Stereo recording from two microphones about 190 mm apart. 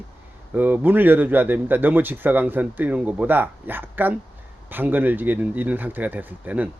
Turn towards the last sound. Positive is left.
turn(degrees=-10)  # may be behind; listen again after turning